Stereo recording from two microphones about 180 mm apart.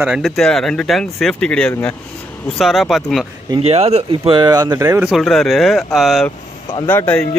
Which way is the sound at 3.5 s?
35° right (ahead or behind).